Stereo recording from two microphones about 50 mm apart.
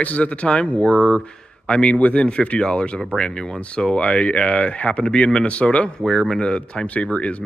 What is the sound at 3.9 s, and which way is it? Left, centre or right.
Speech, left.